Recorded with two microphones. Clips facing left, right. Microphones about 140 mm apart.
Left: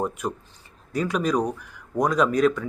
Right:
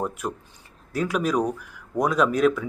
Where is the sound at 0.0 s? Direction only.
Centre (ahead or behind).